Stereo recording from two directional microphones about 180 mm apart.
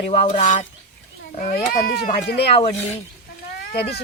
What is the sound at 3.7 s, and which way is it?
Speech, 65° left (ahead or behind).